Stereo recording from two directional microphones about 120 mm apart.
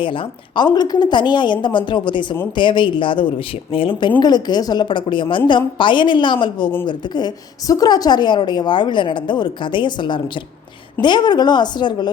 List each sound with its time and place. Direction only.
0.0 s a woman's voice: 45° left (ahead or behind)
4.2 s a woman's voice: 35° left (ahead or behind)